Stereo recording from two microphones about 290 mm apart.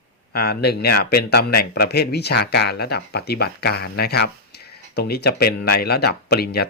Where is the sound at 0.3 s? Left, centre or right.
Left.